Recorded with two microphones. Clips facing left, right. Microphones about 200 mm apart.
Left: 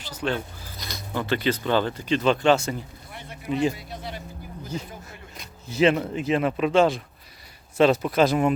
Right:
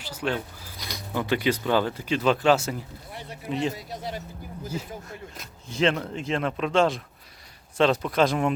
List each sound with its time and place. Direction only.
0.0 s speech: 10° right (ahead or behind)
3.1 s a sound: 35° right (ahead or behind)
3.5 s speech: centre (ahead or behind)
3.8 s speech: 40° right (ahead or behind)
4.6 s speech: 5° right (ahead or behind)